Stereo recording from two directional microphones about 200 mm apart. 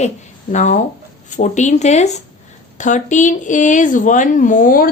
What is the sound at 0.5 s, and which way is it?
A woman's voice, 35° left (ahead or behind).